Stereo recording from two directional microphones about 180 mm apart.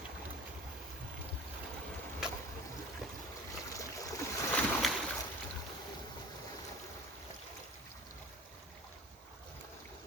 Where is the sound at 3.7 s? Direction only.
15° left (ahead or behind).